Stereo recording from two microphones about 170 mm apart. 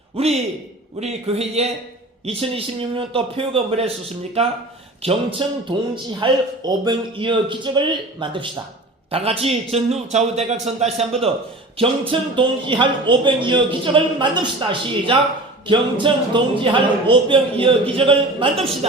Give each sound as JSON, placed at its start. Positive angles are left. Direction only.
{"t": 0.2, "sound": "a man's voice", "side_deg": -35}